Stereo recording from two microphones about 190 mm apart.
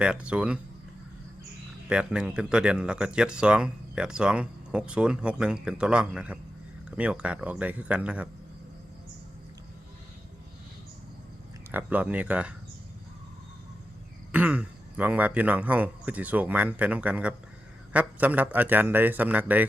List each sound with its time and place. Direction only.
0.0 s speech: 5° right (ahead or behind)
1.9 s a man's voice: 5° right (ahead or behind)
11.7 s a man's voice: 10° right (ahead or behind)
14.3 s a man's voice: 5° right (ahead or behind)